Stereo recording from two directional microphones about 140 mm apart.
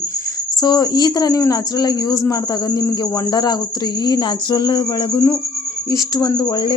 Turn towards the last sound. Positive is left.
turn(degrees=30)  # may be behind; listen again after turning